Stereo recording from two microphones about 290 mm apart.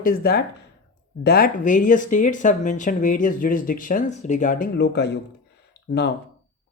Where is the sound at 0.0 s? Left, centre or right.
Left.